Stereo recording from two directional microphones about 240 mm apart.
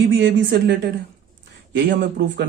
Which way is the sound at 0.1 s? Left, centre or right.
Right.